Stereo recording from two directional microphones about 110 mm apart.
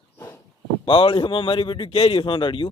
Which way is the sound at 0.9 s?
55° left (ahead or behind).